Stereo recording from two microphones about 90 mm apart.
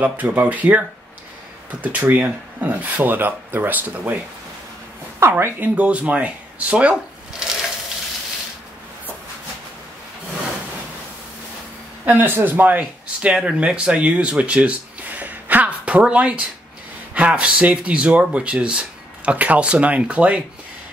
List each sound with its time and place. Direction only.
0.0 s speech: 20° right (ahead or behind)
5.4 s speech: 20° right (ahead or behind)
12.1 s speech: 25° right (ahead or behind)